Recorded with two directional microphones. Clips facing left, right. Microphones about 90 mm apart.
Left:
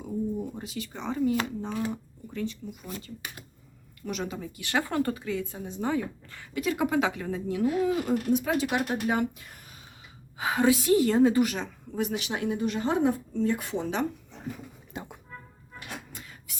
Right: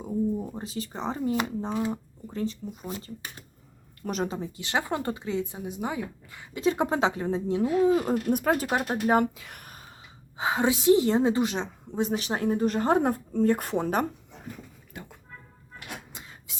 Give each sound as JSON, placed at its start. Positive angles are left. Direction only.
{"t": 0.5, "sound": "a woman's voice", "side_deg": -35}
{"t": 4.0, "sound": "a woman's voice", "side_deg": -40}
{"t": 8.3, "sound": "speech", "side_deg": -50}
{"t": 8.6, "sound": "a woman's voice", "side_deg": -35}
{"t": 9.2, "sound": "speech", "side_deg": -60}
{"t": 10.3, "sound": "a woman's voice", "side_deg": -25}
{"t": 14.9, "sound": "music", "side_deg": 20}
{"t": 16.1, "sound": "a sound", "side_deg": -25}